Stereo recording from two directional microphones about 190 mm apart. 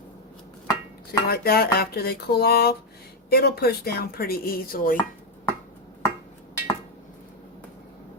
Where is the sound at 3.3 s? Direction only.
55° left (ahead or behind).